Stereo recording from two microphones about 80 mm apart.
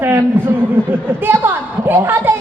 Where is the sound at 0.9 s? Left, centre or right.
Right.